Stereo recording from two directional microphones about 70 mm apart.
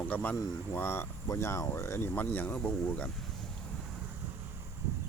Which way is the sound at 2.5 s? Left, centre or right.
Centre.